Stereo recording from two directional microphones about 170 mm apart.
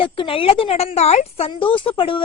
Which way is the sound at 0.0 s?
30° left (ahead or behind).